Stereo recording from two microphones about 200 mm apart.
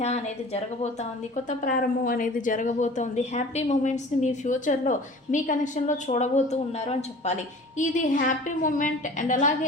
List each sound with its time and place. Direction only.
0.0 s speech: 35° left (ahead or behind)
1.5 s speech: 45° left (ahead or behind)